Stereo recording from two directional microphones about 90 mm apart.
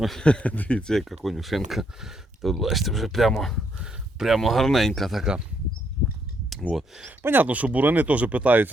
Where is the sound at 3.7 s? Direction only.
5° right (ahead or behind).